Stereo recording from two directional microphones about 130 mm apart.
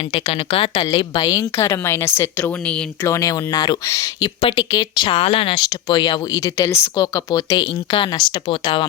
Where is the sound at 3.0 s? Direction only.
25° left (ahead or behind).